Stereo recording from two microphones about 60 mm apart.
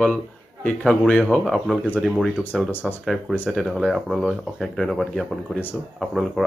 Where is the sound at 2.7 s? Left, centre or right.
Left.